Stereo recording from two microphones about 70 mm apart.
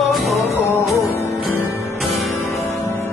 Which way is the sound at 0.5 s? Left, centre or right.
Left.